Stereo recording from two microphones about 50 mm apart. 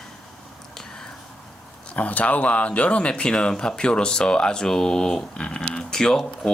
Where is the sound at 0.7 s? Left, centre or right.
Centre.